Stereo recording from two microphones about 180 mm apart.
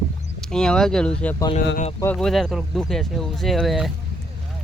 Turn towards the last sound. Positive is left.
turn(degrees=0)  # may be behind; listen again after turning